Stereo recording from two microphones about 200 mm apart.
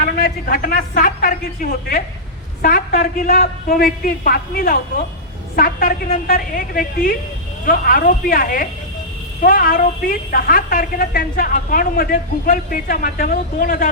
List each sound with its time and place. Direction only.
0.0 s a woman's voice: 45° left (ahead or behind)
2.6 s a woman's voice: 45° left (ahead or behind)